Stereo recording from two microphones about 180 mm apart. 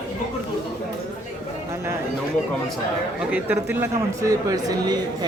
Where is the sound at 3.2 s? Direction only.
5° right (ahead or behind).